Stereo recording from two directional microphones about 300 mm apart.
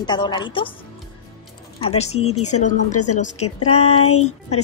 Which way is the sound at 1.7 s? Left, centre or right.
Centre.